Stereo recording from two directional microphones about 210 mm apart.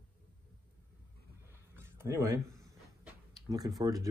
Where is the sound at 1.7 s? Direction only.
10° right (ahead or behind).